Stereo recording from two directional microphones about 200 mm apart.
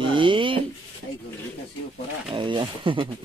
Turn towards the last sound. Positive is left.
turn(degrees=-25)  # may be behind; listen again after turning